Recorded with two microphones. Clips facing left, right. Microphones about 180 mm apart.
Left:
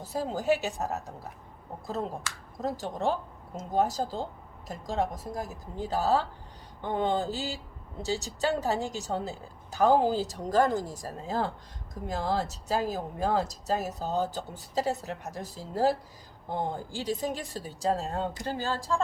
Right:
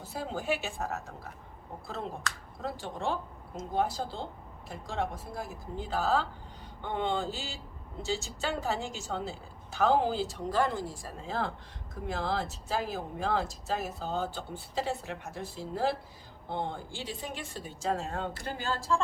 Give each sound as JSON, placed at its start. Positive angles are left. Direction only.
{"t": 0.0, "sound": "speech", "side_deg": 40}
{"t": 2.6, "sound": "speech", "side_deg": 40}